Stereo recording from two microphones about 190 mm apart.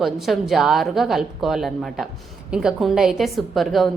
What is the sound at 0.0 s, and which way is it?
A woman's voice, centre (ahead or behind).